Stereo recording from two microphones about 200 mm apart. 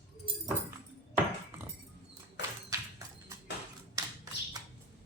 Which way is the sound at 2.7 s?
15° right (ahead or behind).